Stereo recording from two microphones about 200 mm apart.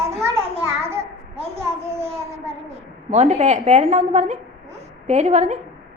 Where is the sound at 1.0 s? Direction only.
30° right (ahead or behind).